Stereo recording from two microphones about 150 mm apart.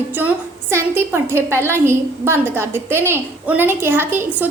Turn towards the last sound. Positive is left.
turn(degrees=-15)  # may be behind; listen again after turning